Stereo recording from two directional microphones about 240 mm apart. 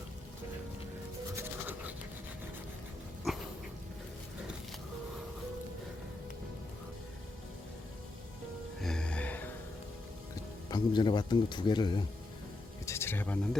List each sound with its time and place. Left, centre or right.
1.4 s music: centre
3.3 s dog: centre
8.8 s music: centre
10.7 s speech: centre
12.8 s a sound: centre